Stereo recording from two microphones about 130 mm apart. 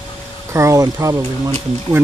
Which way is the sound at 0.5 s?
25° right (ahead or behind).